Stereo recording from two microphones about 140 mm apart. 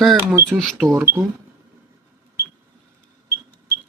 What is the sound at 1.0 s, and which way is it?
Speech, 15° right (ahead or behind).